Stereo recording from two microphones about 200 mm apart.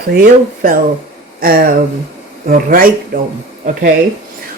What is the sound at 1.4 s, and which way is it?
Speech, 45° right (ahead or behind).